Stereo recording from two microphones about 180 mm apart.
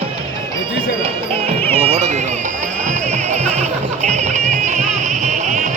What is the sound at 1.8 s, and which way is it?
Run, 40° right (ahead or behind).